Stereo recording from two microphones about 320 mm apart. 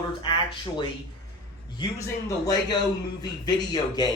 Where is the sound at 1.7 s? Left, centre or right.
Centre.